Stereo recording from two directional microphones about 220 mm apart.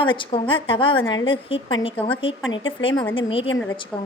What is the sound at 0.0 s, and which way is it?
A woman's voice, 20° left (ahead or behind).